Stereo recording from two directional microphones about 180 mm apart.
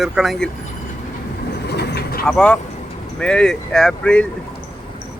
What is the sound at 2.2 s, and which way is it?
Speech, 5° left (ahead or behind).